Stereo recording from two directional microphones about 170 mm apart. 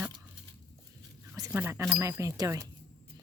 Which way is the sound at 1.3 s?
15° right (ahead or behind).